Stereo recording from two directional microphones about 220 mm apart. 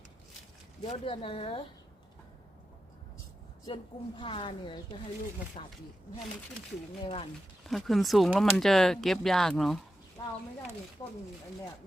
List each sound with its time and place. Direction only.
0.9 s a woman's voice: 25° left (ahead or behind)
3.7 s a woman's voice: 25° left (ahead or behind)
7.0 s a woman's voice: 25° left (ahead or behind)
7.7 s speech: centre (ahead or behind)